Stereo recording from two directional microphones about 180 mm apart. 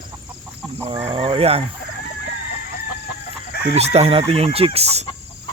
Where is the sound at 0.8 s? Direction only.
30° right (ahead or behind).